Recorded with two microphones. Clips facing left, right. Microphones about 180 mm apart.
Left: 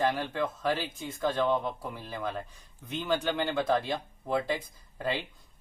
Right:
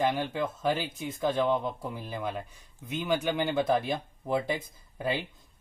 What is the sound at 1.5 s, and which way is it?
Speech, 20° right (ahead or behind).